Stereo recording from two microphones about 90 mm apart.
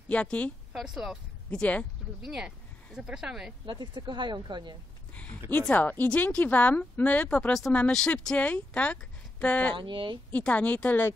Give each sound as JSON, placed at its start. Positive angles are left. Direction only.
{"t": 0.1, "sound": "a woman's voice", "side_deg": 15}
{"t": 0.7, "sound": "speech", "side_deg": -5}
{"t": 1.5, "sound": "a woman's voice", "side_deg": 15}
{"t": 2.2, "sound": "speech", "side_deg": -10}
{"t": 3.8, "sound": "speech", "side_deg": -60}
{"t": 5.1, "sound": "a sound", "side_deg": 15}
{"t": 5.5, "sound": "a woman's voice", "side_deg": 15}
{"t": 9.8, "sound": "speech", "side_deg": -60}
{"t": 10.3, "sound": "a woman's voice", "side_deg": 15}